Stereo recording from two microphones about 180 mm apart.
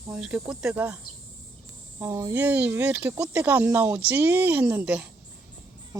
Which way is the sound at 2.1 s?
20° right (ahead or behind).